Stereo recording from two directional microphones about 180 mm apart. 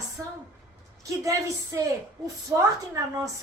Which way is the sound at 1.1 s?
20° right (ahead or behind).